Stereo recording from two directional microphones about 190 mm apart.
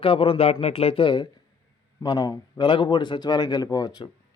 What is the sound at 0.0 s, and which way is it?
Speech, 30° left (ahead or behind).